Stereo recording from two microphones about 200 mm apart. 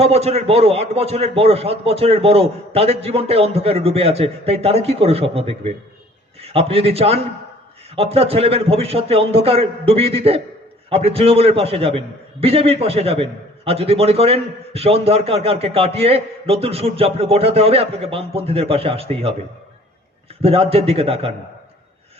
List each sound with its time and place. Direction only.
0.0 s a man's voice: 30° right (ahead or behind)
20.4 s a man's voice: 30° right (ahead or behind)